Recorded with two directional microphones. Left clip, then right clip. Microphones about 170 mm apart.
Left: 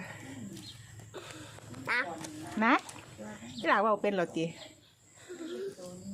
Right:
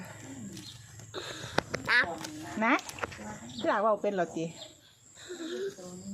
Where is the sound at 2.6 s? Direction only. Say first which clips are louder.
Even; 25° left (ahead or behind).